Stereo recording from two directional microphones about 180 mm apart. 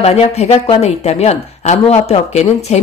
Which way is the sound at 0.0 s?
35° left (ahead or behind).